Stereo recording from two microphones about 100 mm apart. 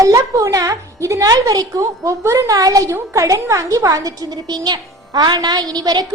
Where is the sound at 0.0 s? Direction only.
30° right (ahead or behind).